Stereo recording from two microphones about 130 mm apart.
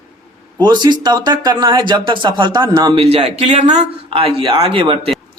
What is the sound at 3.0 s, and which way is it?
Speech, 50° right (ahead or behind).